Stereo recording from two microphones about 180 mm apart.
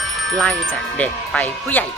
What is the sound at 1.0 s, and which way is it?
Speech, 10° left (ahead or behind).